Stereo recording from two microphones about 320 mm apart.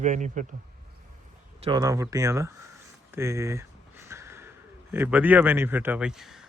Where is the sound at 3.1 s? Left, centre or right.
Centre.